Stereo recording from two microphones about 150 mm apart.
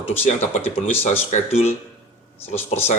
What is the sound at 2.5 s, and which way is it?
Speech, 15° left (ahead or behind).